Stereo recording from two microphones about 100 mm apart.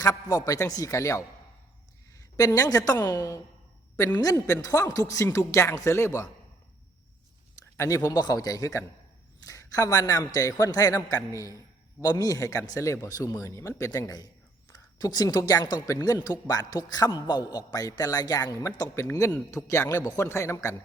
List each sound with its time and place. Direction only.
0.0 s speech: 35° left (ahead or behind)
7.8 s speech: 30° left (ahead or behind)